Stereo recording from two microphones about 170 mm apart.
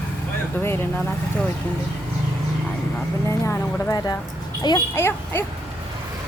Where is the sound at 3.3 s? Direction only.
15° left (ahead or behind).